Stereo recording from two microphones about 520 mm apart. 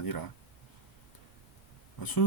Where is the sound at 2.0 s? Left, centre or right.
Left.